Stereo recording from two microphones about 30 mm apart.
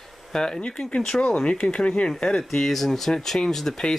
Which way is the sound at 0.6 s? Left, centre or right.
Left.